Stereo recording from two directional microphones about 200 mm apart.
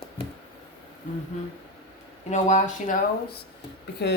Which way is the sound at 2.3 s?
35° left (ahead or behind).